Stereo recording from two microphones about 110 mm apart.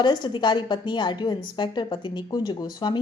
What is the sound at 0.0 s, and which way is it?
A woman's voice, 45° left (ahead or behind).